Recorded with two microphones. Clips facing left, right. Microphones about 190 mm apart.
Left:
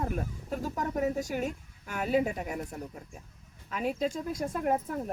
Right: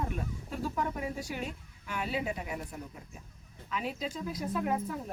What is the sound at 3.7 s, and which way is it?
A woman's voice, 45° left (ahead or behind).